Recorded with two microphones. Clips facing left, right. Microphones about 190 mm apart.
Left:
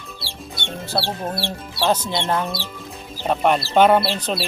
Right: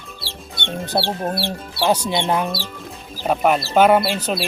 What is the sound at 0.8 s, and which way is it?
Speech, 15° right (ahead or behind).